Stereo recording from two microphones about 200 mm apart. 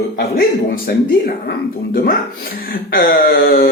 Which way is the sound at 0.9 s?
50° left (ahead or behind).